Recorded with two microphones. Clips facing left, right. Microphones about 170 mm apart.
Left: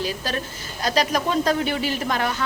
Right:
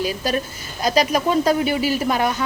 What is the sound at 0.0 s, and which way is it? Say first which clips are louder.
Speech: right 4 dB; 10° right (ahead or behind).